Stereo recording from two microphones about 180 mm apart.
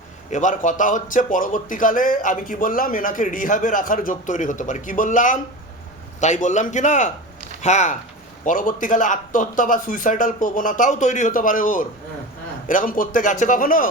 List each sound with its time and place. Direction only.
0.3 s a man's voice: 45° left (ahead or behind)